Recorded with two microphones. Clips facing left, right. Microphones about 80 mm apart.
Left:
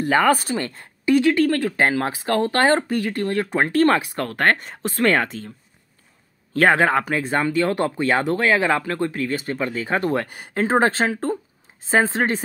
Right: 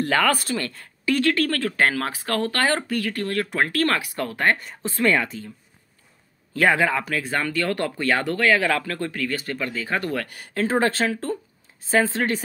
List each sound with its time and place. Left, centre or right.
0.0 s speech: left
4.2 s speech: left
6.5 s speech: left
7.1 s speech: left